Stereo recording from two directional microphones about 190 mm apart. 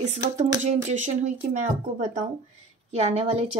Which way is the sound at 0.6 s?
40° right (ahead or behind).